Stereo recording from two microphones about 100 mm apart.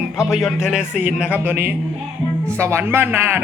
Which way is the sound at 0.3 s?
5° right (ahead or behind).